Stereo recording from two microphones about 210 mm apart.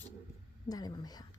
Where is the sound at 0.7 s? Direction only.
20° left (ahead or behind).